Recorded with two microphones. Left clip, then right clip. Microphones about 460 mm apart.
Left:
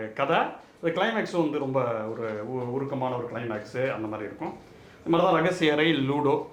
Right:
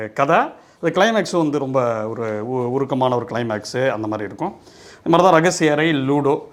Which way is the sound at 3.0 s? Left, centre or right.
Right.